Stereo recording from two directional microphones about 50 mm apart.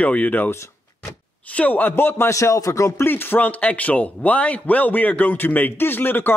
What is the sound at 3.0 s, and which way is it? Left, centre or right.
Speech, left.